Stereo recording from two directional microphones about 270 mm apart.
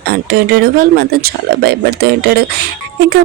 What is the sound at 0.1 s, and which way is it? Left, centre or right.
Speech, right.